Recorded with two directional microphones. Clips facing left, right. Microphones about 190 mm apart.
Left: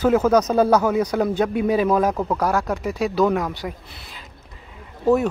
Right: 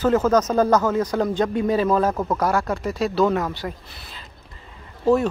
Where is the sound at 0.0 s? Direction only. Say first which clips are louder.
Left 1 dB; 10° left (ahead or behind).